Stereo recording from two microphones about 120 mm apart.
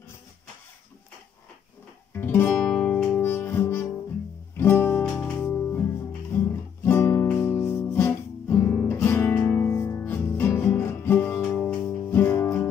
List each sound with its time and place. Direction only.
2.1 s music: 15° left (ahead or behind)